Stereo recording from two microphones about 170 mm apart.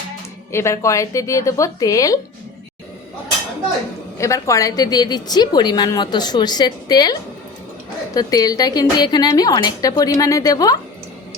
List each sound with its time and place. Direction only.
0.5 s speech: 15° left (ahead or behind)
4.2 s a woman's voice: 20° left (ahead or behind)